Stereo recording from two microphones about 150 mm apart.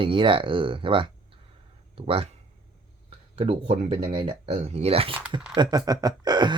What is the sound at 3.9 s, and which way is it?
Speech, 40° right (ahead or behind).